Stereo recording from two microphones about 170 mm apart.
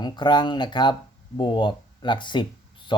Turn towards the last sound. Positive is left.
turn(degrees=30)  # may be behind; listen again after turning